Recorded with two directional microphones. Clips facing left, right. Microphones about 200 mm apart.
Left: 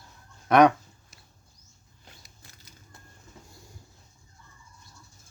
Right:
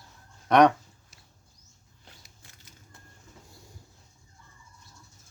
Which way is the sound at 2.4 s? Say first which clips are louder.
Left 2 dB; 40° left (ahead or behind).